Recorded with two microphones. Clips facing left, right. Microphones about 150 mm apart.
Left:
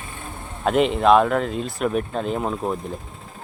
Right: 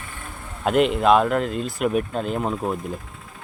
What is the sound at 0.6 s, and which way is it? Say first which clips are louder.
Speech: even; centre (ahead or behind).